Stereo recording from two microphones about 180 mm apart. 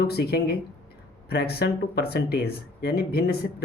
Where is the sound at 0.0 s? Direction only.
60° left (ahead or behind).